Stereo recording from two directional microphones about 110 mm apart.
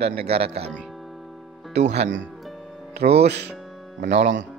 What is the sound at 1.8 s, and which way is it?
Speech, 90° right.